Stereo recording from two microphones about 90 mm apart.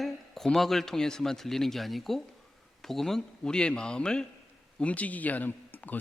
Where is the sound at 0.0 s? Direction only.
Centre (ahead or behind).